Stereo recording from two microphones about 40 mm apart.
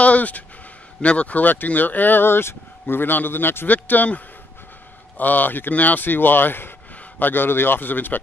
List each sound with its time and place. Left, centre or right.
0.0 s speech: left